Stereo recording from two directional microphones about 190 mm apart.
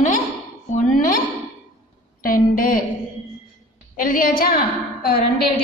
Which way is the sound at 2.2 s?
45° left (ahead or behind).